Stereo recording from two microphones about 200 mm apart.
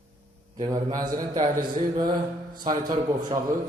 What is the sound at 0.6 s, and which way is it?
A man's voice, 25° right (ahead or behind).